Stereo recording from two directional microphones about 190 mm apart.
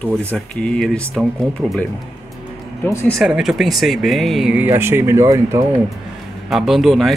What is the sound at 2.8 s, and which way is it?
Speech, 10° left (ahead or behind).